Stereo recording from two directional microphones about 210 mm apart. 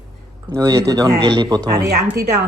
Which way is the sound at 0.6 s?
15° right (ahead or behind).